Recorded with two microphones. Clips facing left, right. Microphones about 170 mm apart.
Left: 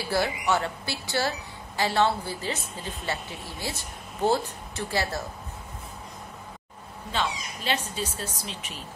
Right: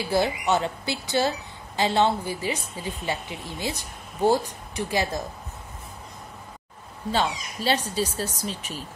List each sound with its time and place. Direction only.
0.0 s a woman's voice: 20° right (ahead or behind)
7.1 s speech: 35° right (ahead or behind)